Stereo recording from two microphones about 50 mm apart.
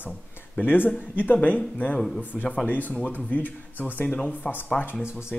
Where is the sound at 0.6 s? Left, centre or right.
Left.